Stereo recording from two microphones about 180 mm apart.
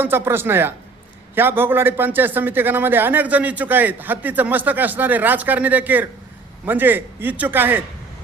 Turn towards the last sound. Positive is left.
turn(degrees=-10)  # may be behind; listen again after turning